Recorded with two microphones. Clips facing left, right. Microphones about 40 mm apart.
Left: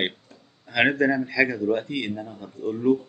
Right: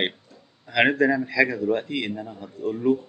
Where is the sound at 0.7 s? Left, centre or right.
Centre.